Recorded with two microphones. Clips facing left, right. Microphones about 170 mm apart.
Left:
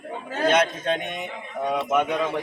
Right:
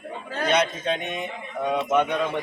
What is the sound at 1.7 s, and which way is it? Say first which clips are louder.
Speech: right 1 dB; 5° left (ahead or behind).